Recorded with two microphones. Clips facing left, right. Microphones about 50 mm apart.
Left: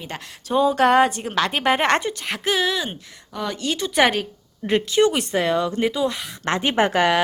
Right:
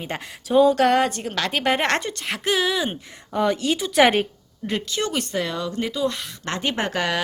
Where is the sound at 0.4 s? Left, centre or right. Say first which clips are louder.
Right 1 dB; centre.